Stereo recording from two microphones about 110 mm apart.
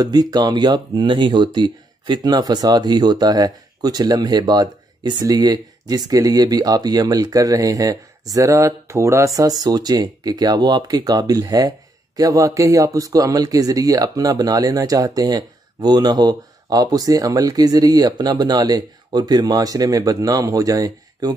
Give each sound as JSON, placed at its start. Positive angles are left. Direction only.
{"t": 0.0, "sound": "speech", "side_deg": -35}